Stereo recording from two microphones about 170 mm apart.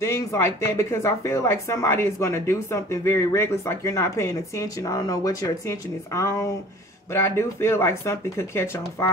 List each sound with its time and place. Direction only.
0.0 s speech: 15° left (ahead or behind)